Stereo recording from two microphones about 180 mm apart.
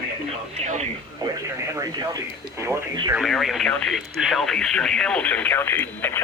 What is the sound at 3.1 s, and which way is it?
Speech, centre (ahead or behind).